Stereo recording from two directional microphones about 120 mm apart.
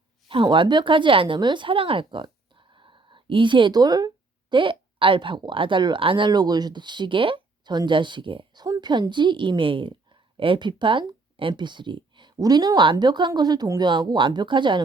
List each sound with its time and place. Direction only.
0.3 s speech: 45° right (ahead or behind)